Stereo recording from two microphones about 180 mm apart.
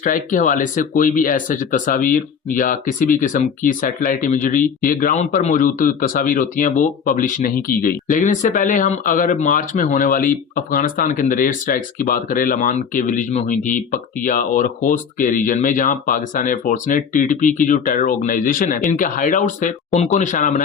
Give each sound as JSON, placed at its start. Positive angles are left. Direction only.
{"t": 0.0, "sound": "speech", "side_deg": 45}